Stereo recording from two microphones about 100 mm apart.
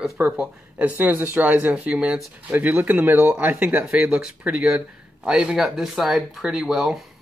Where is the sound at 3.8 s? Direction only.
5° right (ahead or behind).